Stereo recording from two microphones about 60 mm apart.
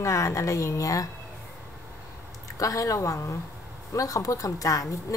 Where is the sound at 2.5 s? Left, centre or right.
Left.